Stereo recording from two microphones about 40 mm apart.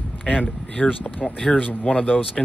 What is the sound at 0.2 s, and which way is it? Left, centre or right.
Speech, left.